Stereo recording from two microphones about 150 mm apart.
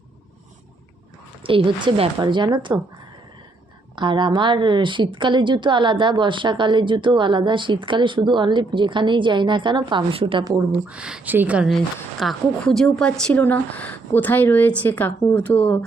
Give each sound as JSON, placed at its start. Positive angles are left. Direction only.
{"t": 1.5, "sound": "a woman's voice", "side_deg": -35}
{"t": 3.9, "sound": "a woman's voice", "side_deg": -30}
{"t": 10.8, "sound": "speech", "side_deg": -5}